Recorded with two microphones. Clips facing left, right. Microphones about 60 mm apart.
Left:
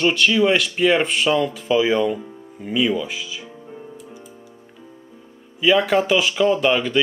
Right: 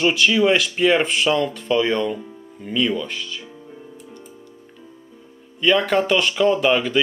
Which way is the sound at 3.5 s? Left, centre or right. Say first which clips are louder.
Left 2 dB; centre.